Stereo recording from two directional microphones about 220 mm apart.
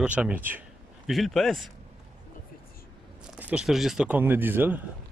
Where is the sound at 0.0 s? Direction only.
5° right (ahead or behind).